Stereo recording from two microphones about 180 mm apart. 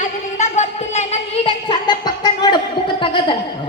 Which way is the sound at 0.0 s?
40° left (ahead or behind).